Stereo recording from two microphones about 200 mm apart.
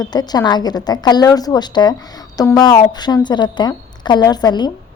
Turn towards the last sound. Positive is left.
turn(degrees=20)  # may be behind; listen again after turning